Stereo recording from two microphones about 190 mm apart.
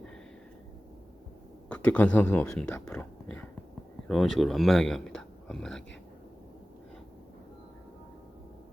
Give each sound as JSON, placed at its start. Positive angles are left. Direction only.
{"t": 1.7, "sound": "a man's voice", "side_deg": 5}